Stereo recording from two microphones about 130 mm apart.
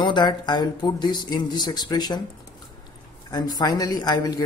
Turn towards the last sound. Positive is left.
turn(degrees=30)  # may be behind; listen again after turning